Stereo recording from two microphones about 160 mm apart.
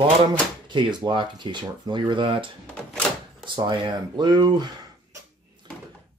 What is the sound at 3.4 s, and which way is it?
Speech, 30° right (ahead or behind).